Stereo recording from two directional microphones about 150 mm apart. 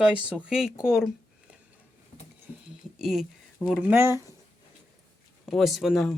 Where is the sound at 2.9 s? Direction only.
Centre (ahead or behind).